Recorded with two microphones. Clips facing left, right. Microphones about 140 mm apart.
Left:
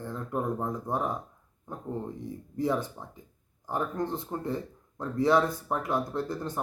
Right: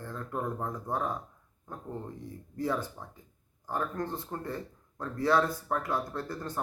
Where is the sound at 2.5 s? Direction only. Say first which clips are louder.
Left 3 dB; 15° left (ahead or behind).